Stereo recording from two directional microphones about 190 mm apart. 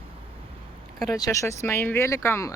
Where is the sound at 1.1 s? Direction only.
20° left (ahead or behind).